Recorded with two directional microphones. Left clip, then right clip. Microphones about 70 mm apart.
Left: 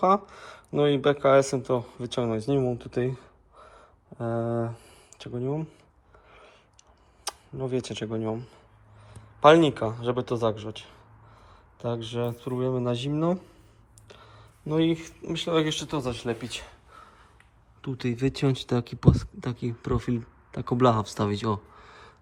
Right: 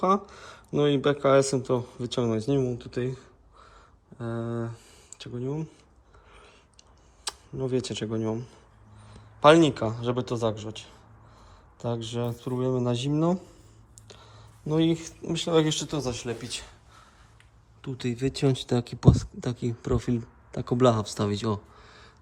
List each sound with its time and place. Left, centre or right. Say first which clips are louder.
0.0 s speech: left 2 dB; right
2.6 s gasp: left 2 dB; centre
4.4 s speech: left 5 dB; centre
6.3 s a sound: left 1 dB; right
7.5 s speech: right 2 dB; right
15.9 s speech: left 1 dB; right
17.8 s speech: left 1 dB; right
18.1 s speech: left 2 dB; centre
18.3 s speech: right 1 dB; right
18.9 s speech: right 1 dB; right